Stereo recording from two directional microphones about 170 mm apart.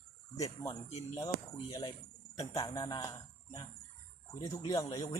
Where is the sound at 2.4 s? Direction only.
20° left (ahead or behind).